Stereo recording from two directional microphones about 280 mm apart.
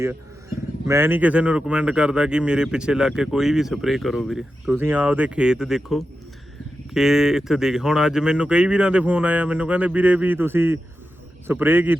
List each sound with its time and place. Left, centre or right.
0.9 s a man's voice: centre